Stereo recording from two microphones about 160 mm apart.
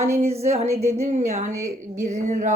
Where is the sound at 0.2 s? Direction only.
40° right (ahead or behind).